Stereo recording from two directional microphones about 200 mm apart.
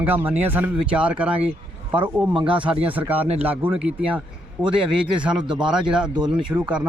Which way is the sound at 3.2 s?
30° right (ahead or behind).